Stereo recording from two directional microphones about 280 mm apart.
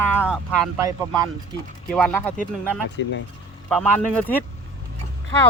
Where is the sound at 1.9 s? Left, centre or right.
Centre.